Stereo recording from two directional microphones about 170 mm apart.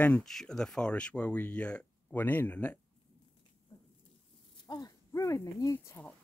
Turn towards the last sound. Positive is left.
turn(degrees=15)  # may be behind; listen again after turning